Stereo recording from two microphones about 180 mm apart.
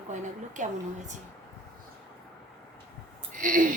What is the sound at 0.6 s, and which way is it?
Speech, 45° right (ahead or behind).